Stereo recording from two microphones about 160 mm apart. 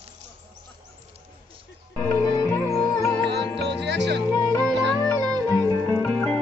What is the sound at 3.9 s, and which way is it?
Music, 90° right.